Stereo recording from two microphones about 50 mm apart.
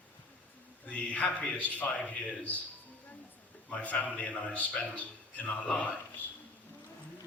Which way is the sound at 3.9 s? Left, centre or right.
Left.